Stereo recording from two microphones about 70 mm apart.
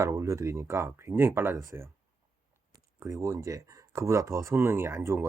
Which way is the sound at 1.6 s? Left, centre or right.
Right.